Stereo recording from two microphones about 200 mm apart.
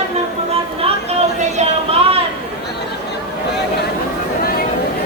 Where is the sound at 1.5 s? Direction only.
30° right (ahead or behind).